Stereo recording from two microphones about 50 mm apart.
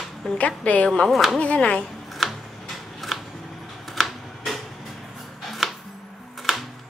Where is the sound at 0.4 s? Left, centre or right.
Left.